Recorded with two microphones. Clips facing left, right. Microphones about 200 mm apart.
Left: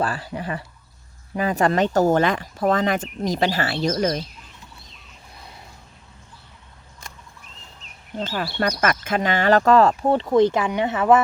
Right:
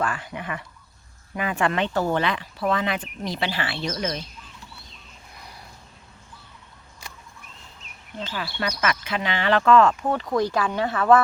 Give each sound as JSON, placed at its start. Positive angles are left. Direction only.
{"t": 0.0, "sound": "speech", "side_deg": 35}
{"t": 8.2, "sound": "speech", "side_deg": 50}